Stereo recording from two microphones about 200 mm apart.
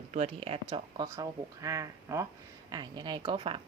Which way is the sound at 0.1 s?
35° right (ahead or behind).